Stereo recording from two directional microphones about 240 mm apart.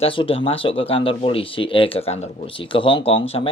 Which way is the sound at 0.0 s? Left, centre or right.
Left.